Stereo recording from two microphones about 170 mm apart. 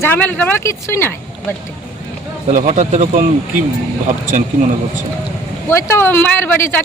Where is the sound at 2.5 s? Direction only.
50° right (ahead or behind).